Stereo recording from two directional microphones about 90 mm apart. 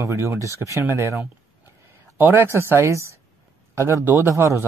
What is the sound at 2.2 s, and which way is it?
A man's voice, 30° right (ahead or behind).